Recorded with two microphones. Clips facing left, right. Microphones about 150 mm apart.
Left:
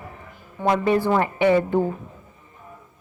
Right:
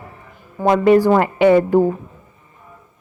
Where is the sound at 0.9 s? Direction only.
55° right (ahead or behind).